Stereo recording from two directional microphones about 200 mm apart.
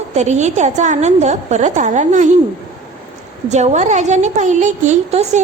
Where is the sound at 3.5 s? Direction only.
35° right (ahead or behind).